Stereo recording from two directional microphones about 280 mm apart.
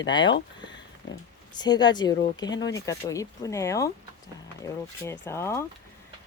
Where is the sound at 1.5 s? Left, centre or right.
Centre.